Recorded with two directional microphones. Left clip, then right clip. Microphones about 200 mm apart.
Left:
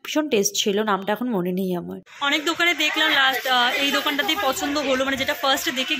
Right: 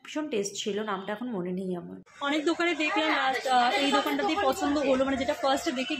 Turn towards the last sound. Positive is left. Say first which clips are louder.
# left 6 dB
turn(degrees=5)  # may be behind; listen again after turning